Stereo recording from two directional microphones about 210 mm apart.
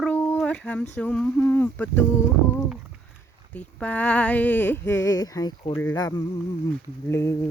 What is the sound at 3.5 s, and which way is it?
Speech, 5° left (ahead or behind).